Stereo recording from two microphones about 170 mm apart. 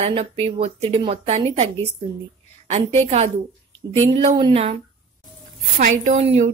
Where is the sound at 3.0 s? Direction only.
40° right (ahead or behind).